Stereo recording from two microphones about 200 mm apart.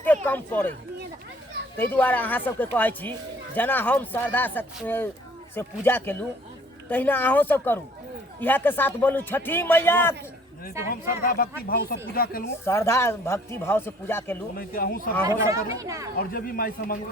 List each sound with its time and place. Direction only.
0.3 s speech: 10° left (ahead or behind)
1.7 s speech: 10° left (ahead or behind)
11.2 s a man's voice: 45° left (ahead or behind)
12.6 s speech: 15° left (ahead or behind)
14.5 s a man's voice: 45° left (ahead or behind)
15.3 s speech: 15° right (ahead or behind)
16.1 s a man's voice: 45° left (ahead or behind)